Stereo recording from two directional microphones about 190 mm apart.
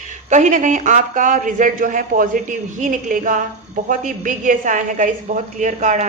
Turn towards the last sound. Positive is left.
turn(degrees=-40)  # may be behind; listen again after turning